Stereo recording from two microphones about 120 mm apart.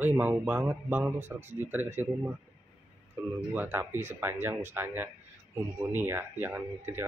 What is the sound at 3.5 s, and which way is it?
Speech, 15° right (ahead or behind).